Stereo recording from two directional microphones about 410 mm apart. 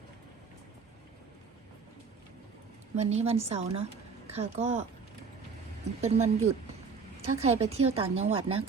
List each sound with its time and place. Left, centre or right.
2.9 s a woman's voice: centre
6.0 s a woman's voice: centre